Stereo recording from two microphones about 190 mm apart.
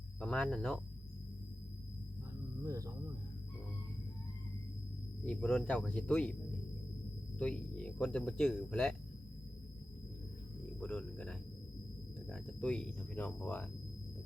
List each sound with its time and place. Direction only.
0.2 s speech: 5° left (ahead or behind)
2.6 s speech: 15° right (ahead or behind)
5.2 s speech: 5° left (ahead or behind)
7.3 s speech: 5° left (ahead or behind)
10.8 s speech: 5° left (ahead or behind)